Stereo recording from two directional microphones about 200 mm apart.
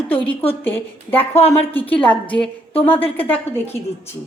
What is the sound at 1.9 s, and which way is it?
A woman's voice, 5° left (ahead or behind).